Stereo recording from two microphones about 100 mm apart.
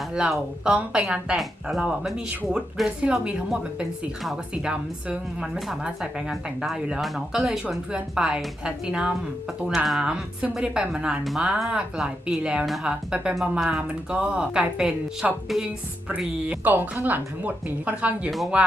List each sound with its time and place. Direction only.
0.0 s a woman's voice: 5° right (ahead or behind)